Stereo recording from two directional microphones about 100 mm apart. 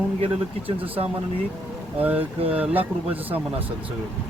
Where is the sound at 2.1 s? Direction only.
75° right (ahead or behind).